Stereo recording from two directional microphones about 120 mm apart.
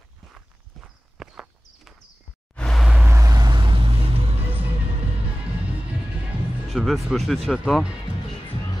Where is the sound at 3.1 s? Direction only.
30° right (ahead or behind); by 4.1 s 45° right (ahead or behind).